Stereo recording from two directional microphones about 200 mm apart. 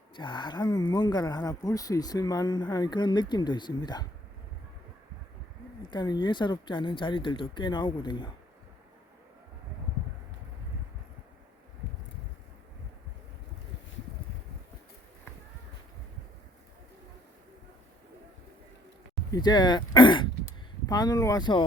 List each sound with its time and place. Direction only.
0.2 s speech: 25° left (ahead or behind)
5.9 s speech: 20° left (ahead or behind)
19.3 s speech: 20° left (ahead or behind)